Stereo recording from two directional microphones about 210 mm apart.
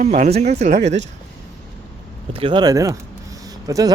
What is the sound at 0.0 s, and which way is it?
Speech, 35° right (ahead or behind).